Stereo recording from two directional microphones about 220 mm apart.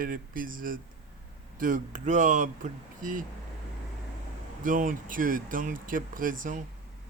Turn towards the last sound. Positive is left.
turn(degrees=-40)  # may be behind; listen again after turning